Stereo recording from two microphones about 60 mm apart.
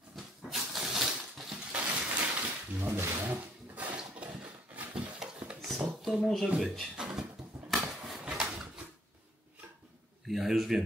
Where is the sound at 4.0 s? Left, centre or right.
Centre.